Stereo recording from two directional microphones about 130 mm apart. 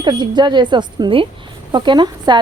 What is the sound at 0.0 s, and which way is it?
Speech, 35° right (ahead or behind).